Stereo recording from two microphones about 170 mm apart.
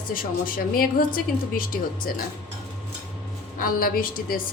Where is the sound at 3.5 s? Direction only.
55° left (ahead or behind).